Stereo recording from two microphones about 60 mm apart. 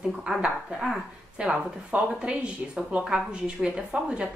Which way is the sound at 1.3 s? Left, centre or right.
Centre.